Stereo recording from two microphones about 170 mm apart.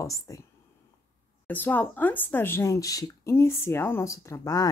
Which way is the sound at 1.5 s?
10° left (ahead or behind).